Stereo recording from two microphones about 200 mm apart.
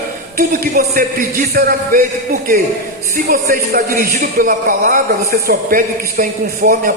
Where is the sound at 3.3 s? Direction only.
45° right (ahead or behind).